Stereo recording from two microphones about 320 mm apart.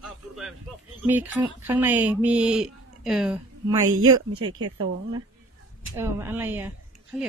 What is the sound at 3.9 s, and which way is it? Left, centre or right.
Speech, right.